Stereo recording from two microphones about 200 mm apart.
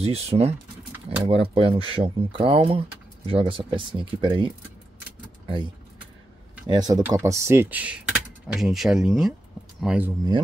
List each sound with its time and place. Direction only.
0.0 s speech: 30° right (ahead or behind)
6.7 s speech: 20° right (ahead or behind)